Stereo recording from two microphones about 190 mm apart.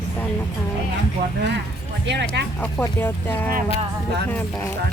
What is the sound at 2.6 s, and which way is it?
Speech, 10° left (ahead or behind).